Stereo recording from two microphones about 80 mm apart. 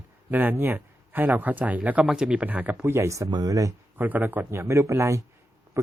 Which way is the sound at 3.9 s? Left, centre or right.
Right.